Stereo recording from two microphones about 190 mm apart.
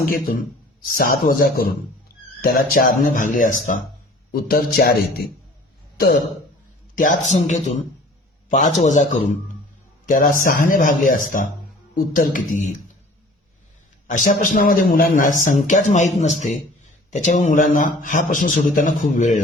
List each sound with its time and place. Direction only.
0.0 s a man's voice: 50° left (ahead or behind)
10.1 s a man's voice: 45° left (ahead or behind)
14.1 s a man's voice: 45° left (ahead or behind)